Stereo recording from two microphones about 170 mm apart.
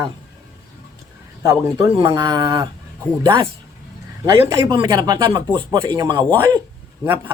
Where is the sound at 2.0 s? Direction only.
25° right (ahead or behind).